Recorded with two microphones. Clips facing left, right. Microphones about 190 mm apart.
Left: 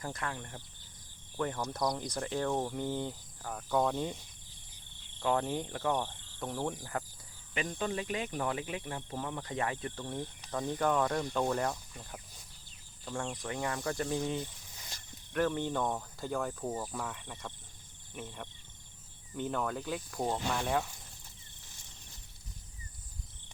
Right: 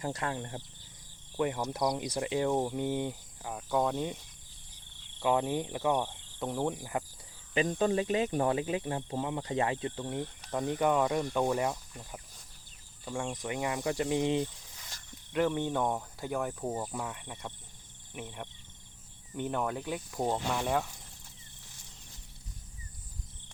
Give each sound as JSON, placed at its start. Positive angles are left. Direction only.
{"t": 0.1, "sound": "speech", "side_deg": -25}
{"t": 1.4, "sound": "speech", "side_deg": -15}
{"t": 5.2, "sound": "speech", "side_deg": -10}
{"t": 7.5, "sound": "speech", "side_deg": -30}
{"t": 15.3, "sound": "speech", "side_deg": -15}